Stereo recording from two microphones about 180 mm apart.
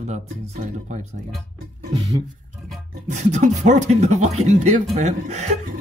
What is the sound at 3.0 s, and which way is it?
Speech, 40° right (ahead or behind).